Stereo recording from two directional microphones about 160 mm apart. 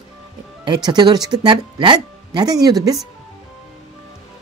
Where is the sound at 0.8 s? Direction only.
25° right (ahead or behind).